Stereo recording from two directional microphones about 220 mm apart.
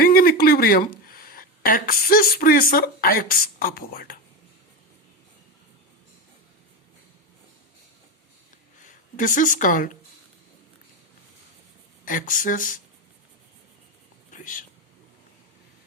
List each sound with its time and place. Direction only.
0.0 s speech: 40° left (ahead or behind)
8.8 s speech: 35° left (ahead or behind)
12.0 s speech: 35° left (ahead or behind)
14.3 s whispering: 35° left (ahead or behind)